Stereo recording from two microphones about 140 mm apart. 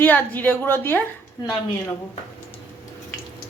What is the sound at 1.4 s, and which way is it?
Speech, 25° left (ahead or behind).